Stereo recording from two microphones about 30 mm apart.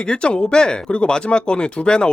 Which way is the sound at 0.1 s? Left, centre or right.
Left.